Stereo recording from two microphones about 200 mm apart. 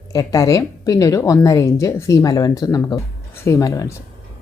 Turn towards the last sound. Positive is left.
turn(degrees=15)  # may be behind; listen again after turning